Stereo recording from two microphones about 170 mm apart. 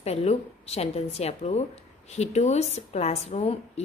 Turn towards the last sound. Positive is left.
turn(degrees=35)  # may be behind; listen again after turning